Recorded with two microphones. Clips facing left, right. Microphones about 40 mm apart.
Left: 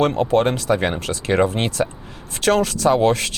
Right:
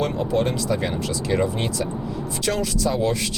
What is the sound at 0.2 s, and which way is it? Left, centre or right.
Speech, left.